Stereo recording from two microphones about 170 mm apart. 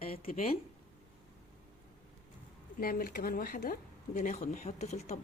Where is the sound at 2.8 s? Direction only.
60° left (ahead or behind).